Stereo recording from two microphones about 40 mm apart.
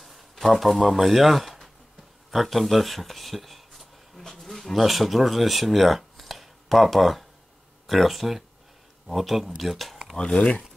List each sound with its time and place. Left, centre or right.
0.0 s speech: centre
10.1 s speech: left